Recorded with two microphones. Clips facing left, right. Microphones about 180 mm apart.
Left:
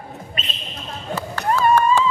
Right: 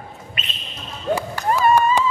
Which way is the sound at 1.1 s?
10° right (ahead or behind).